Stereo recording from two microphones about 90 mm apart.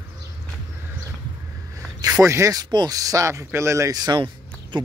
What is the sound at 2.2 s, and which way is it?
Speech, 35° right (ahead or behind).